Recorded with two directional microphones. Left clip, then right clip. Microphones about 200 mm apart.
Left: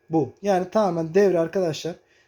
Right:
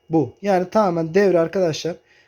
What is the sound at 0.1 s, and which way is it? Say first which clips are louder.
Speech: right 3 dB; 25° right (ahead or behind).